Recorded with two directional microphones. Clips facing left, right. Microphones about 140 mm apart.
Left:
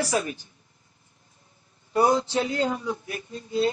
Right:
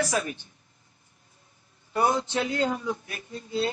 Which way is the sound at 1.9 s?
35° left (ahead or behind).